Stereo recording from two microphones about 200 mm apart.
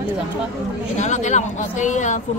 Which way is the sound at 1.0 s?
35° left (ahead or behind).